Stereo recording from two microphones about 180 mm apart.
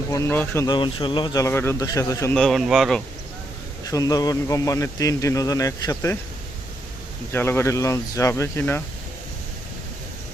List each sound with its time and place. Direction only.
0.1 s speech: 15° left (ahead or behind)
0.7 s speech: 25° left (ahead or behind)
2.3 s speech: centre (ahead or behind)
3.8 s speech: 20° left (ahead or behind)
7.3 s speech: 15° left (ahead or behind)